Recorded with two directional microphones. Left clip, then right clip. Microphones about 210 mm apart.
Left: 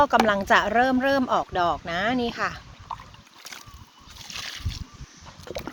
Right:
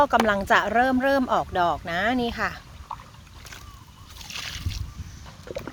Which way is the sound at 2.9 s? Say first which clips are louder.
Left 1 dB; 40° left (ahead or behind).